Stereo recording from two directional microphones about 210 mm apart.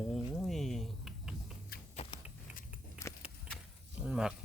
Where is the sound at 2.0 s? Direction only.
30° left (ahead or behind).